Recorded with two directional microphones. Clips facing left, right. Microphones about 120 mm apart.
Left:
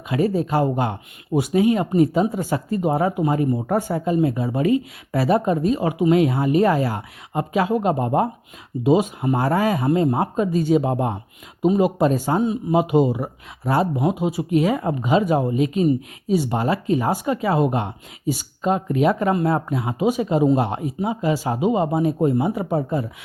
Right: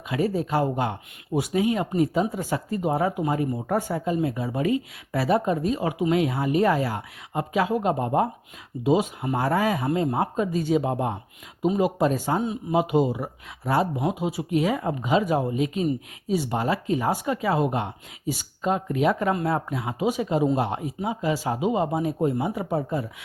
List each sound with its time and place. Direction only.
0.1 s speech: 45° left (ahead or behind)
2.8 s speech: 45° left (ahead or behind)
8.8 s speech: 35° left (ahead or behind)